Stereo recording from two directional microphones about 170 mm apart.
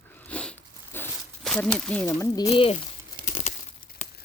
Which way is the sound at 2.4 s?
35° left (ahead or behind).